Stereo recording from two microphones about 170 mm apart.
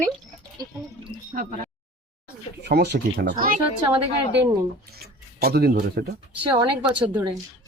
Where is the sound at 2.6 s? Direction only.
80° right.